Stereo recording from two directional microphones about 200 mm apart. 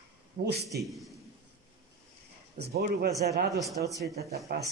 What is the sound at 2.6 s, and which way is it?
Speech, 55° right (ahead or behind).